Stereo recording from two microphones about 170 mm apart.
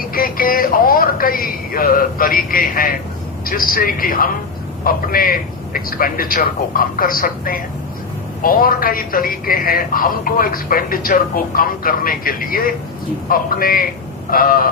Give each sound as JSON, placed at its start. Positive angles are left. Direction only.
{"t": 0.0, "sound": "a man's voice", "side_deg": 55}